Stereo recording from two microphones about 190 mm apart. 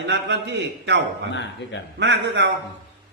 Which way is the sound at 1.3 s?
70° left (ahead or behind).